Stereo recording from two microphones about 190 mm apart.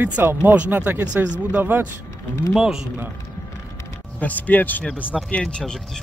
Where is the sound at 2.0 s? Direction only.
15° left (ahead or behind).